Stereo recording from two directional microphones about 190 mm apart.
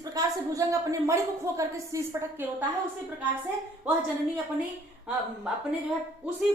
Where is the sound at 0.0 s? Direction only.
20° right (ahead or behind).